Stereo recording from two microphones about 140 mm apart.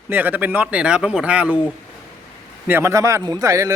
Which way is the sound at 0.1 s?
15° right (ahead or behind).